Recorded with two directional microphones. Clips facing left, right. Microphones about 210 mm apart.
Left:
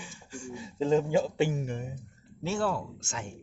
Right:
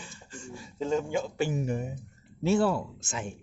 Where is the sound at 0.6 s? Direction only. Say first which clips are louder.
Left 3 dB; 30° left (ahead or behind).